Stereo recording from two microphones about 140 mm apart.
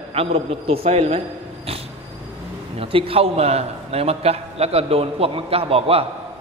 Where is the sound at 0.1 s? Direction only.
45° right (ahead or behind).